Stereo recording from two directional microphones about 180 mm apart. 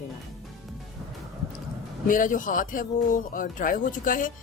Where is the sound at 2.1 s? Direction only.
45° left (ahead or behind).